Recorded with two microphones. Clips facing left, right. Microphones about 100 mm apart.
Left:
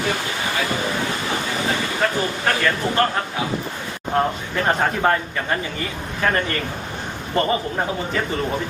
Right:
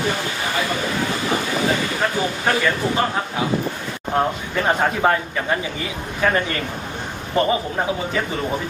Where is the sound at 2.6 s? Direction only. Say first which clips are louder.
Even; 10° right (ahead or behind).